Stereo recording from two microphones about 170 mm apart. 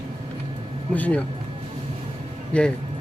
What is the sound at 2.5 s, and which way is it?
Speech, 5° left (ahead or behind).